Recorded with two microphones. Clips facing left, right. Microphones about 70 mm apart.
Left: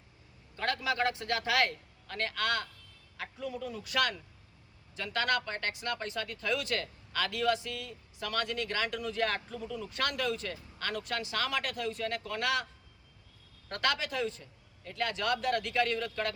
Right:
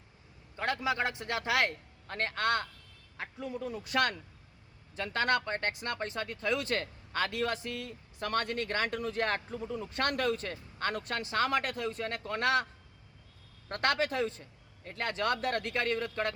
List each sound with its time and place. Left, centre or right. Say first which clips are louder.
0.5 s a man's voice: right 1 dB; right
13.7 s speech: right 2 dB; right